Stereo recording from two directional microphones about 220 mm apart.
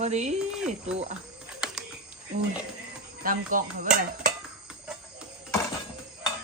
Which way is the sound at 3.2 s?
40° right (ahead or behind).